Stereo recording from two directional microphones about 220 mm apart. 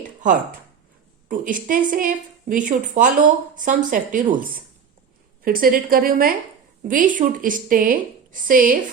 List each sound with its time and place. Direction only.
1.3 s a woman's voice: 40° right (ahead or behind)